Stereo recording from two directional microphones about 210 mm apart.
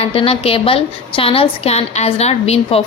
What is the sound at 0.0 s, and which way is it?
A woman's voice, 25° left (ahead or behind).